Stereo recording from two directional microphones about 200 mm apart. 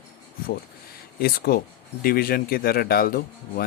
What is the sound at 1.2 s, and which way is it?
Speech, 50° left (ahead or behind).